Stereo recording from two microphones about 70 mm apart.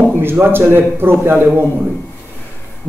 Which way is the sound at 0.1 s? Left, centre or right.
Right.